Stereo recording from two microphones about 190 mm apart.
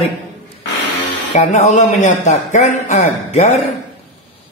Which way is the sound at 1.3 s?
40° left (ahead or behind).